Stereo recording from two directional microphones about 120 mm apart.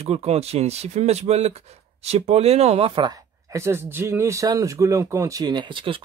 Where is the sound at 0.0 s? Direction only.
60° right (ahead or behind).